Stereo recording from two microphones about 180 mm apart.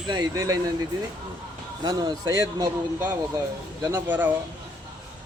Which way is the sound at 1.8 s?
20° right (ahead or behind).